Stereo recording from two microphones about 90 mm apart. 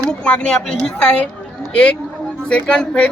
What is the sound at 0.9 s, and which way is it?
A woman's voice, 15° left (ahead or behind).